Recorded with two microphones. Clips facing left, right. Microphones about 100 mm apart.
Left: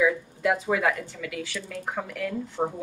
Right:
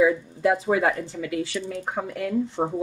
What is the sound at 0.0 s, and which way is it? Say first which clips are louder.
Speech: right 4 dB; 30° right (ahead or behind).